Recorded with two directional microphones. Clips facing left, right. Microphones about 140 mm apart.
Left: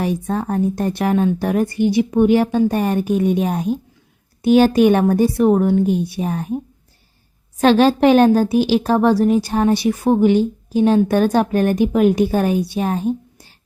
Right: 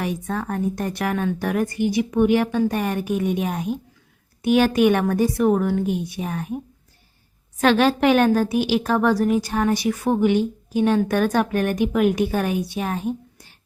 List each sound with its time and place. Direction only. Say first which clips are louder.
0.0 s a woman's voice: left 5 dB; 30° left (ahead or behind)
7.6 s a woman's voice: left 5 dB; 30° left (ahead or behind)